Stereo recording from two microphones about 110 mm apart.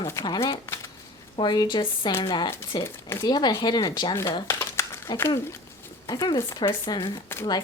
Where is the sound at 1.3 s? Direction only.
40° left (ahead or behind).